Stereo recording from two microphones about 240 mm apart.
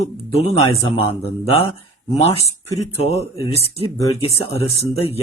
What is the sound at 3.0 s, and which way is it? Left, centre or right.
Speech, left.